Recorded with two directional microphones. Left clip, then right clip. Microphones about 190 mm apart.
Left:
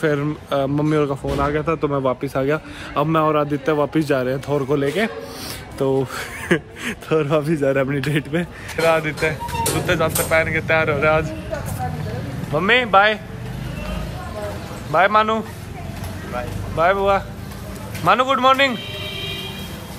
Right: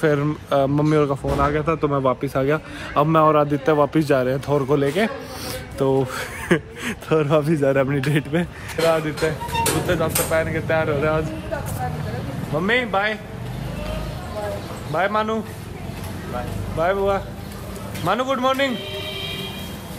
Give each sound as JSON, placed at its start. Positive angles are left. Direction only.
{"t": 0.0, "sound": "speech", "side_deg": 5}
{"t": 1.5, "sound": "speech", "side_deg": 10}
{"t": 8.8, "sound": "speech", "side_deg": -15}
{"t": 12.5, "sound": "speech", "side_deg": -10}
{"t": 14.9, "sound": "speech", "side_deg": -5}